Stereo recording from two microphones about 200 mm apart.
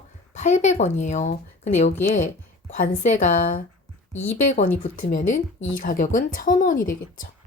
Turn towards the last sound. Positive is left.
turn(degrees=45)  # may be behind; listen again after turning